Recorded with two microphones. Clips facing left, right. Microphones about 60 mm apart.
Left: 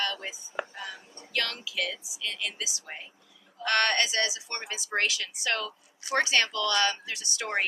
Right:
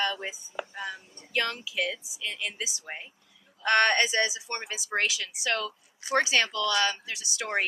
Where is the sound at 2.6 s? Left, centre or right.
Right.